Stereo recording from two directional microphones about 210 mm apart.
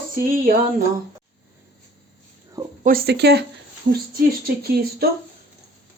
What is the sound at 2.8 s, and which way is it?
Speech, 45° right (ahead or behind).